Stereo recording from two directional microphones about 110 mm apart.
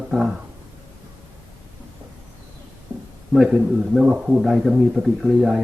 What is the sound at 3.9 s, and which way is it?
A man's voice, 10° right (ahead or behind).